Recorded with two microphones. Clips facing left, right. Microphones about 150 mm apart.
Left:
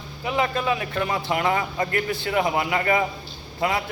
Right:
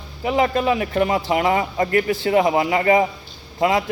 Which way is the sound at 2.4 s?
25° right (ahead or behind).